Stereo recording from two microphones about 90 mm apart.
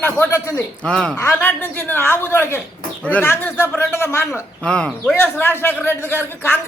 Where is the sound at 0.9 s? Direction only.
10° left (ahead or behind).